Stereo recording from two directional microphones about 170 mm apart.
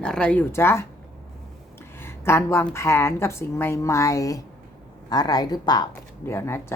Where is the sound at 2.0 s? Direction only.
15° left (ahead or behind).